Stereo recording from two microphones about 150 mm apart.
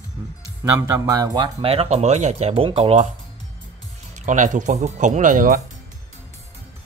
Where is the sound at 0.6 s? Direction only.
25° right (ahead or behind).